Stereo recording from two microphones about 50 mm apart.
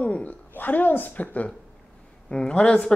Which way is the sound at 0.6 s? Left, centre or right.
Left.